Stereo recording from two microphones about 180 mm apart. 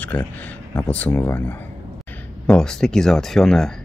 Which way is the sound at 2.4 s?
5° left (ahead or behind).